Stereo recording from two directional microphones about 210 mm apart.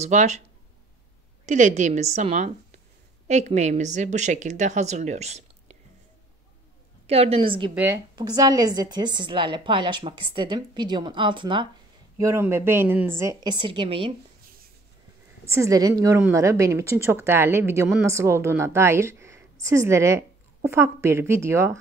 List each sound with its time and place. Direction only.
0.0 s a woman's voice: 35° right (ahead or behind)
1.4 s a woman's voice: 35° right (ahead or behind)
7.1 s a woman's voice: 30° right (ahead or behind)
7.7 s a woman's voice: 10° right (ahead or behind)
15.4 s a woman's voice: 15° right (ahead or behind)